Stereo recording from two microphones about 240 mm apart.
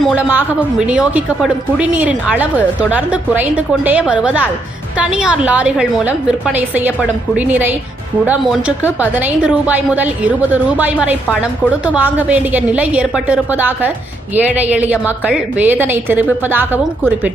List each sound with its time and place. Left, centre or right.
0.0 s a woman's voice: centre